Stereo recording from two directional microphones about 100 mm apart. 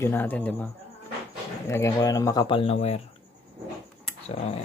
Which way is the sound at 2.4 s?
70° left (ahead or behind).